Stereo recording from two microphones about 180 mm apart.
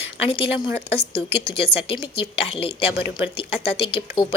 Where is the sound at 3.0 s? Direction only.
10° right (ahead or behind).